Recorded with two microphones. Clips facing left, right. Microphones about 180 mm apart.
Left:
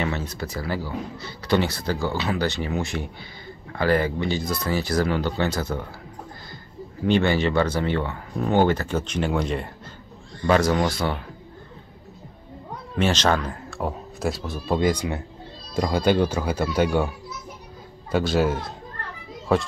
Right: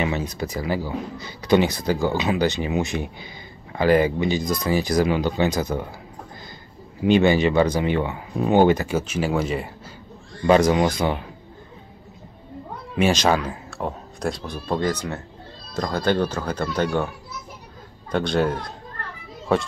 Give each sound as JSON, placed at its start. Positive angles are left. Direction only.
{"t": 0.0, "sound": "a man's voice", "side_deg": -15}
{"t": 7.1, "sound": "a man's voice", "side_deg": -15}
{"t": 10.4, "sound": "a man's voice", "side_deg": -15}
{"t": 12.9, "sound": "speech", "side_deg": -10}
{"t": 18.1, "sound": "a man's voice", "side_deg": 5}